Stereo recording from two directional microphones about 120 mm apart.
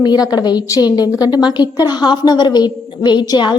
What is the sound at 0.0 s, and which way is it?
A woman's voice, 35° left (ahead or behind).